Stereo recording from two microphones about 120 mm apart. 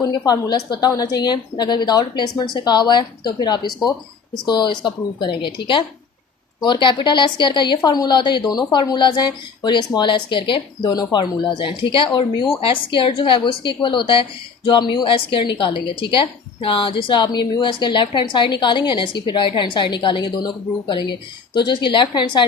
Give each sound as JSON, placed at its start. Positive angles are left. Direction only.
{"t": 0.0, "sound": "a woman's voice", "side_deg": 30}